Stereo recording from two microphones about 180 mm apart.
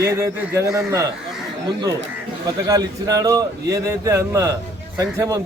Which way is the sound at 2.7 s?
20° right (ahead or behind).